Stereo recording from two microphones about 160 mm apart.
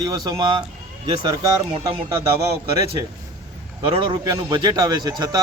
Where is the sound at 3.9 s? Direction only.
30° right (ahead or behind).